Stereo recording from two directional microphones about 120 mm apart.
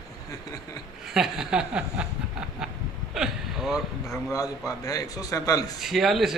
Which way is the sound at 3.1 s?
5° right (ahead or behind).